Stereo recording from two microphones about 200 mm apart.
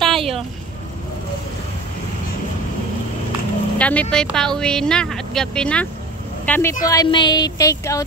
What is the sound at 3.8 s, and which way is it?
Speech, 5° left (ahead or behind).